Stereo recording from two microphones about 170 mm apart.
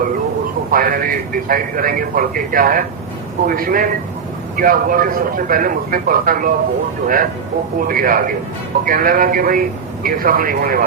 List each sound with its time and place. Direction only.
0.7 s a man's voice: 55° right (ahead or behind)
7.9 s a man's voice: 55° right (ahead or behind)